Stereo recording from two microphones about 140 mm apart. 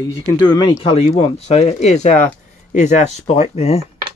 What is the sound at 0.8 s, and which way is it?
Speech, 40° left (ahead or behind).